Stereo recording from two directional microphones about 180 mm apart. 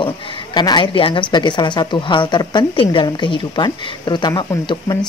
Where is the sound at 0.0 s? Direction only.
30° left (ahead or behind).